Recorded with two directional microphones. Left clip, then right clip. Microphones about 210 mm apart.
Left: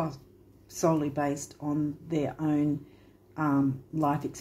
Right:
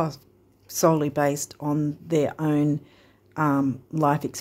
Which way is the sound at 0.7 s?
55° right (ahead or behind).